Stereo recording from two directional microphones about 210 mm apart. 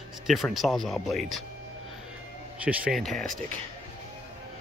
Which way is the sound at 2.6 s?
5° right (ahead or behind).